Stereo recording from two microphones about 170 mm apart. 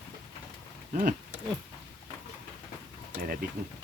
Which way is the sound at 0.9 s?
50° right (ahead or behind).